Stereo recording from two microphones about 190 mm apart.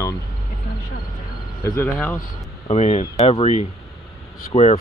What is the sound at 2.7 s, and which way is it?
Speech, 35° left (ahead or behind).